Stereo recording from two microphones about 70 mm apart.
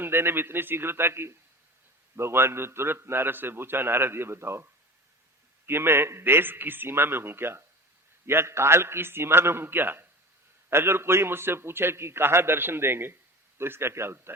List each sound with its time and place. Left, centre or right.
0.0 s a man's voice: right